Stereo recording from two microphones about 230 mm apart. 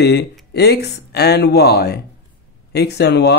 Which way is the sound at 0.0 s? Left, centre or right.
Left.